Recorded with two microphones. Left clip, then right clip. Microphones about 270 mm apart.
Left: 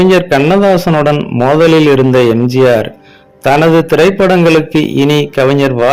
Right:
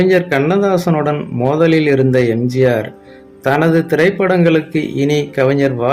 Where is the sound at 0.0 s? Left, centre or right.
Left.